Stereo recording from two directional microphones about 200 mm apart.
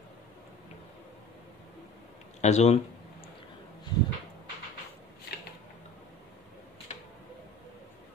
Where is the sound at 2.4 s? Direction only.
35° left (ahead or behind).